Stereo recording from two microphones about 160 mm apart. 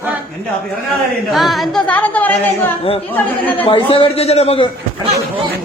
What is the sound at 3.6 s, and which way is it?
A man's voice, 35° left (ahead or behind).